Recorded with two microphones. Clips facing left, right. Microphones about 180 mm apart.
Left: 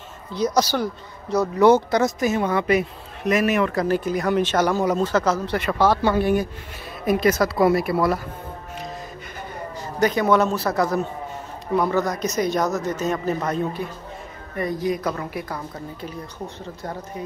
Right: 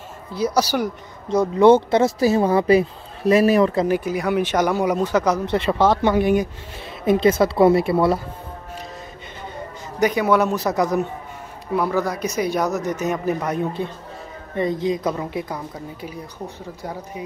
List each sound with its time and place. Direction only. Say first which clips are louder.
0.3 s speech: right 1 dB; 10° right (ahead or behind); by 3.8 s 30° right (ahead or behind)
3.8 s speech: right 1 dB; 10° right (ahead or behind); by 8.2 s 25° right (ahead or behind)
9.9 s speech: right 1 dB; 10° right (ahead or behind)
11.7 s speech: even; 5° right (ahead or behind)